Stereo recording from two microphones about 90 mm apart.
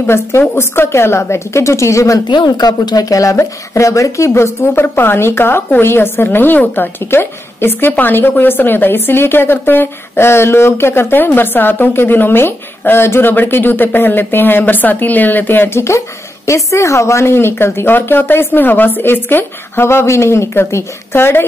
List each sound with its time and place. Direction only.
0.0 s a woman's voice: 25° left (ahead or behind)
2.2 s a woman's voice: 55° left (ahead or behind); by 21.5 s 25° left (ahead or behind)